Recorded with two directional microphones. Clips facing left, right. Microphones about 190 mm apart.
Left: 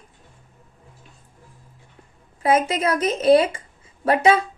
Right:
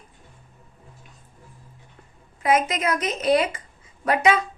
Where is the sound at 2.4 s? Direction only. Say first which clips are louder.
Left 2 dB; 30° left (ahead or behind).